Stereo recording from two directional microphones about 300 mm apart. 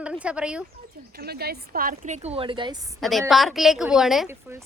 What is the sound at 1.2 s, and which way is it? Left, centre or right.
A woman's voice, right.